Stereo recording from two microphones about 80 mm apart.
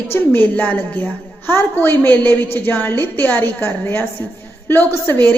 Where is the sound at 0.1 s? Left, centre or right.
Left.